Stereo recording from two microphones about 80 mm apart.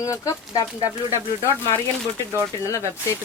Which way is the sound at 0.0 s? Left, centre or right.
Left.